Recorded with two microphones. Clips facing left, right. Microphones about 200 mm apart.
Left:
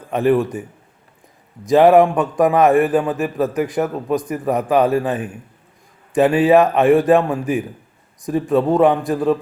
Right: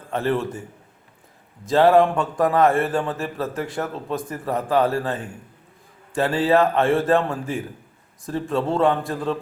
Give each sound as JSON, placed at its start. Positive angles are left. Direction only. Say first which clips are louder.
{"t": 0.1, "sound": "a man's voice", "louder": "left 7 dB", "side_deg": 15}
{"t": 1.6, "sound": "a man's voice", "louder": "left 4 dB", "side_deg": 15}